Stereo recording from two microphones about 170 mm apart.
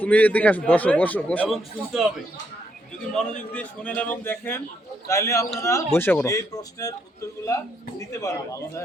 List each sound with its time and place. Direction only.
0.0 s a man's voice: 10° left (ahead or behind)
3.5 s a man's voice: 10° left (ahead or behind)